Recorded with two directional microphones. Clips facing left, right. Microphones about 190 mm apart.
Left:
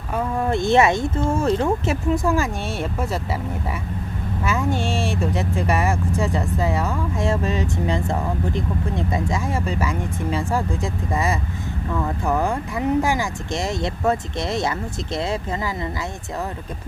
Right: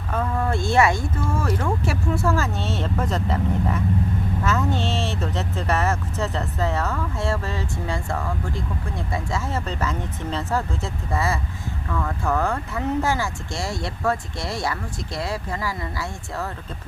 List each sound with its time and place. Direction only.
0.1 s speech: 15° left (ahead or behind)